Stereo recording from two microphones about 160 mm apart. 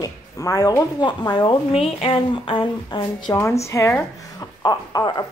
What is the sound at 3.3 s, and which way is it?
Speech, 15° left (ahead or behind).